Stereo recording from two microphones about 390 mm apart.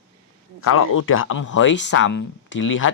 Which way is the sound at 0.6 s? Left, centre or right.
Left.